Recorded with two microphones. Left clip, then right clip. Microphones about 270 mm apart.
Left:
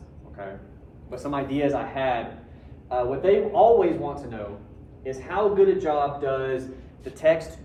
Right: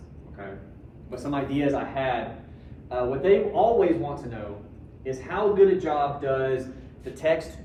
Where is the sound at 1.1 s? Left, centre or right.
Centre.